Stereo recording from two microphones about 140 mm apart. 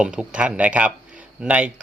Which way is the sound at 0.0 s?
10° right (ahead or behind).